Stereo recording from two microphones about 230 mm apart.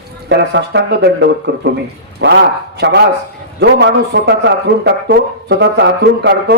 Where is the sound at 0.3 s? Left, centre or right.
Right.